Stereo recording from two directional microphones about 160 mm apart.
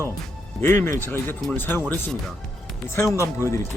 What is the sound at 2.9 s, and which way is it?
Speech, 15° left (ahead or behind).